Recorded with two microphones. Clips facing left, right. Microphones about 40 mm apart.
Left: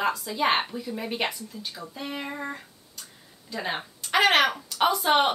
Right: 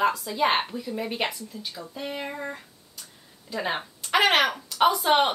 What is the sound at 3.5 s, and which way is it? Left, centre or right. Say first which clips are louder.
Speech: right 2 dB; centre.